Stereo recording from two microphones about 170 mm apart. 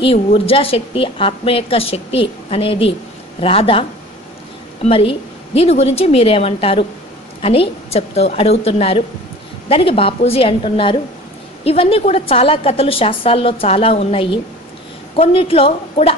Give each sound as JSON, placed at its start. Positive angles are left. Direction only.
{"t": 0.0, "sound": "a woman's voice", "side_deg": 35}
{"t": 4.8, "sound": "a woman's voice", "side_deg": 35}